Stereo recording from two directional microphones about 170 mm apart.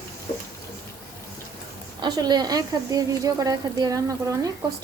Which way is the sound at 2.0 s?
25° right (ahead or behind).